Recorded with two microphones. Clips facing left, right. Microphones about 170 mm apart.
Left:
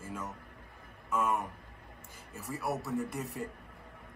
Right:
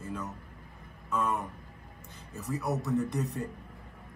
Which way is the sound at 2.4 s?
Centre (ahead or behind).